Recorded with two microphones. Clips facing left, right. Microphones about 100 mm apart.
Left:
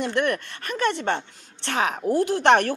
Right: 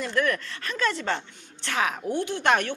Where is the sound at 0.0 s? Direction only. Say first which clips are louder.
Left 2 dB; 30° left (ahead or behind).